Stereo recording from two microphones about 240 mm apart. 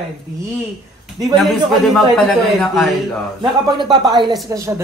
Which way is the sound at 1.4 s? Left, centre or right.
Centre.